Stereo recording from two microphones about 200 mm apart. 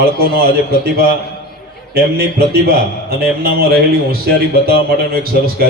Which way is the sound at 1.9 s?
50° right (ahead or behind).